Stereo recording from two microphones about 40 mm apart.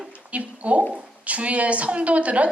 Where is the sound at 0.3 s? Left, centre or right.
Right.